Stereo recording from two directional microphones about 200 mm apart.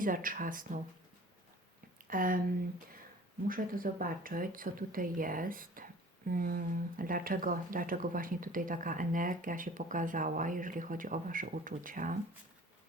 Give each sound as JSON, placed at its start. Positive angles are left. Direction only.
{"t": 0.0, "sound": "speech", "side_deg": -45}
{"t": 2.0, "sound": "speech", "side_deg": -45}
{"t": 3.4, "sound": "speech", "side_deg": -45}